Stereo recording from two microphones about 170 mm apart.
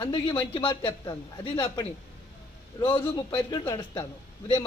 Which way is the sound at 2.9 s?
25° left (ahead or behind).